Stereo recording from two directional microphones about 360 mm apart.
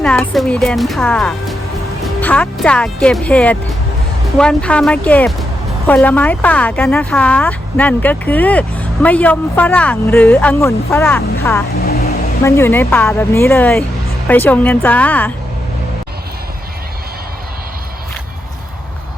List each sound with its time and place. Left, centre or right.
0.0 s speech: centre
11.8 s vehicle: left
12.4 s speech: centre